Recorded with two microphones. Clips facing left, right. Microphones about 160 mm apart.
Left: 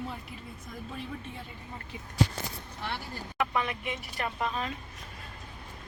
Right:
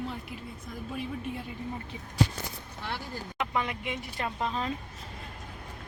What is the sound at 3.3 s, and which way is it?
Speech, 15° right (ahead or behind).